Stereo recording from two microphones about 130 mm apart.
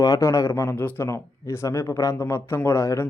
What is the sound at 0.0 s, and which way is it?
A man's voice, 25° left (ahead or behind).